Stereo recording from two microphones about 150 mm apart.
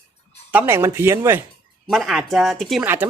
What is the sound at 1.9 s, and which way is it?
Speech, centre (ahead or behind).